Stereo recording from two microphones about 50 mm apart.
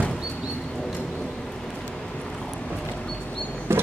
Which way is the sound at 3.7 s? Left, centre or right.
Right.